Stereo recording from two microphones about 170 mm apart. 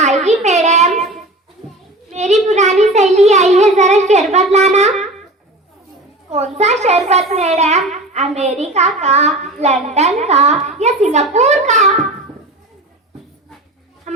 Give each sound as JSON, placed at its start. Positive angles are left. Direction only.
{"t": 0.0, "sound": "a sound", "side_deg": -40}
{"t": 2.1, "sound": "child singing", "side_deg": -45}
{"t": 4.3, "sound": "a child's voice", "side_deg": -40}
{"t": 6.3, "sound": "a child's voice", "side_deg": -40}